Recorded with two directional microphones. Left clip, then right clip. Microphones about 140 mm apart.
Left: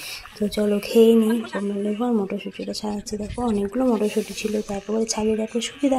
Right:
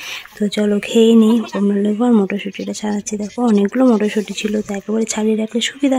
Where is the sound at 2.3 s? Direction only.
35° right (ahead or behind).